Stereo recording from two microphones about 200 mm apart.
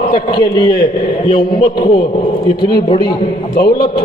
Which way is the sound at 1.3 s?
25° left (ahead or behind).